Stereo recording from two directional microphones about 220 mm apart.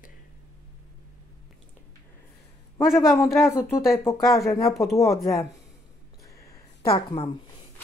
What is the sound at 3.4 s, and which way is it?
Speech, 15° left (ahead or behind).